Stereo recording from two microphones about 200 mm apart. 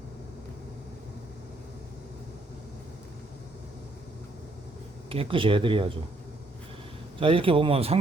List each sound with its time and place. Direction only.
5.0 s speech: 30° right (ahead or behind)
7.2 s speech: 25° right (ahead or behind)